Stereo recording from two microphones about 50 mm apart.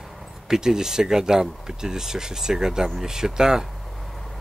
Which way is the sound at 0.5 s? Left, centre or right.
Centre.